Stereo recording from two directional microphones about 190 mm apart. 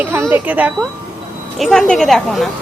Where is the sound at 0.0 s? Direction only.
15° right (ahead or behind).